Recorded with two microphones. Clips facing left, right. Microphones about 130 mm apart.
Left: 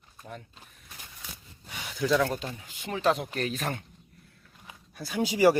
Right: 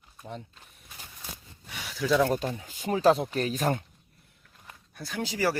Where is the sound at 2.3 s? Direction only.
40° right (ahead or behind).